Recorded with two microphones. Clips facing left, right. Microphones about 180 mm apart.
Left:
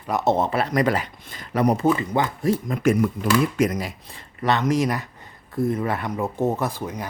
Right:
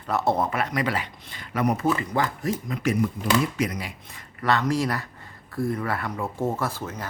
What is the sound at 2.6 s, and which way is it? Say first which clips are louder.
Speech: left 3 dB; 50° left (ahead or behind).